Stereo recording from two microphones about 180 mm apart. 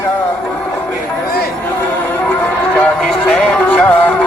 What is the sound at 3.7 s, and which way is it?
Music, 5° left (ahead or behind).